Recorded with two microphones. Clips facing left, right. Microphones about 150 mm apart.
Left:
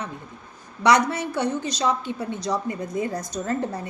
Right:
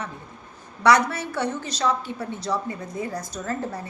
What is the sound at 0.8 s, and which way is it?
A woman's voice, 20° left (ahead or behind).